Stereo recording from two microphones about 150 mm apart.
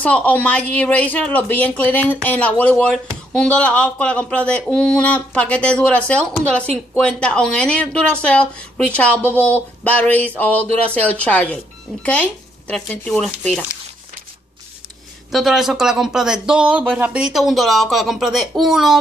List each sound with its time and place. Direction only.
0.0 s speech: 10° left (ahead or behind)
15.3 s speech: 5° right (ahead or behind)